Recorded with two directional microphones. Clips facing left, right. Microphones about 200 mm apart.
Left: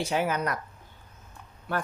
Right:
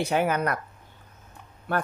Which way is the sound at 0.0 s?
60° right (ahead or behind).